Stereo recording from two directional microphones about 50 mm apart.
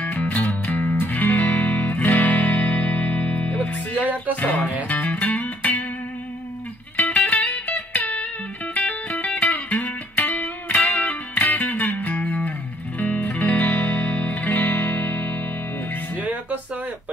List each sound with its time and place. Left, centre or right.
0.0 s music: left
4.0 s music: right
4.4 s speech: left
4.8 s music: left
7.0 s music: left
16.2 s music: right